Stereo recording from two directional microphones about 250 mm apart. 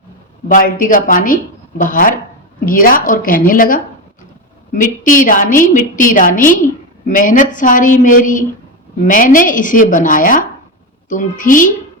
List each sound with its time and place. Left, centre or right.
0.4 s a woman's voice: left